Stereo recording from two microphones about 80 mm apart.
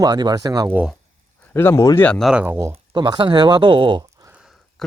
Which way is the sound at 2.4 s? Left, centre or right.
Right.